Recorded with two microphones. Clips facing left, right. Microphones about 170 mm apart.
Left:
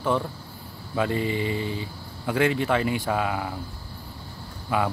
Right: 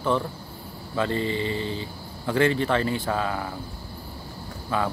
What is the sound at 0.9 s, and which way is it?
Speech, 10° left (ahead or behind).